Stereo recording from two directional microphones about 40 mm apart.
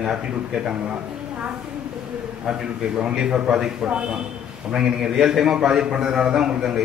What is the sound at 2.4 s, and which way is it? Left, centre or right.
A man's voice, centre.